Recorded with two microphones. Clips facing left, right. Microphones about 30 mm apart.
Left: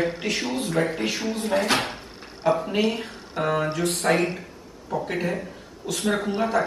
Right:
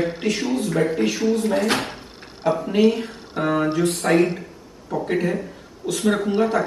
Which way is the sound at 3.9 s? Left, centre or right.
Left.